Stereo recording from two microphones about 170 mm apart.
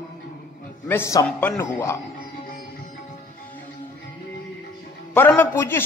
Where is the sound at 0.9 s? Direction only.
15° left (ahead or behind).